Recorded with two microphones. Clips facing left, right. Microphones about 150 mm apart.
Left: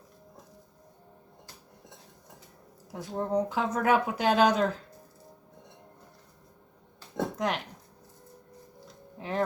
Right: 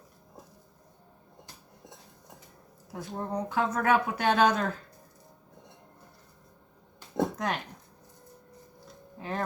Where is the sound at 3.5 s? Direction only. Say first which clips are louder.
Right 3 dB; 15° left (ahead or behind).